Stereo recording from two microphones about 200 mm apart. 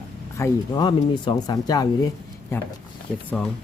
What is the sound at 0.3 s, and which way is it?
Speech, 20° left (ahead or behind).